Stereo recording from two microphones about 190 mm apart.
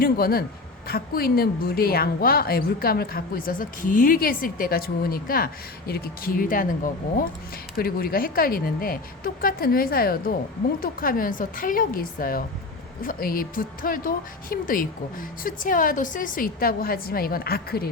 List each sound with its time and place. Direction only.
0.0 s a woman's voice: 50° left (ahead or behind)